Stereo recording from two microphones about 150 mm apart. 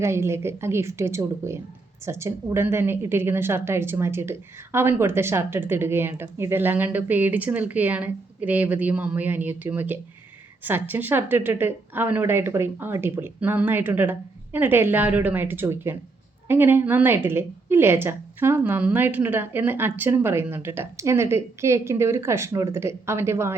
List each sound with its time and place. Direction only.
0.0 s a woman's voice: 20° right (ahead or behind)